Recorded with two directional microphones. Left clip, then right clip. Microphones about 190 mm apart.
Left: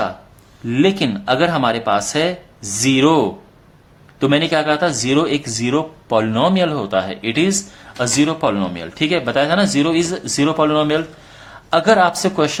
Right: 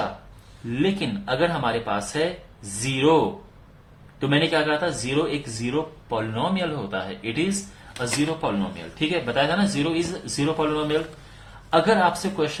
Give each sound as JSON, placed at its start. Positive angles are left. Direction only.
{"t": 0.7, "sound": "speech", "side_deg": 55}
{"t": 4.2, "sound": "speech", "side_deg": 55}